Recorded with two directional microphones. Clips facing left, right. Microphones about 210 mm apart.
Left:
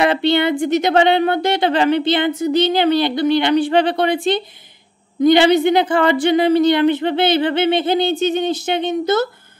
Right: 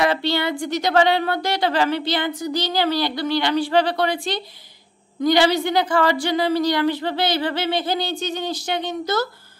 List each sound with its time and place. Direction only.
0.0 s speech: 20° left (ahead or behind)